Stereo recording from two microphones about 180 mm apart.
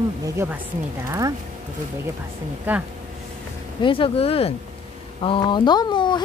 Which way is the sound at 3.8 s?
30° left (ahead or behind).